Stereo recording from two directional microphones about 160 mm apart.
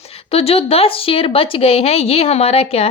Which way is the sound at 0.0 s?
40° left (ahead or behind).